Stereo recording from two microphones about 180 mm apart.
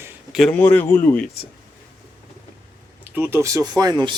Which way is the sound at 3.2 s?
15° right (ahead or behind).